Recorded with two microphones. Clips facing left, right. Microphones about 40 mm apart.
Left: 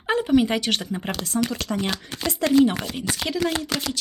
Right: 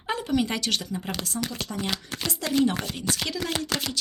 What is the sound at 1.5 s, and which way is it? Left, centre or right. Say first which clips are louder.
Speech: left 6 dB; left.